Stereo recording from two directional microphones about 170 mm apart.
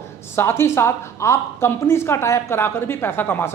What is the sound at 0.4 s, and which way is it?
A woman's voice, 15° left (ahead or behind).